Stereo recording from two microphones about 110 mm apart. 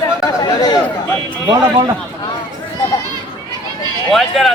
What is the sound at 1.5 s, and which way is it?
Speech, 45° right (ahead or behind).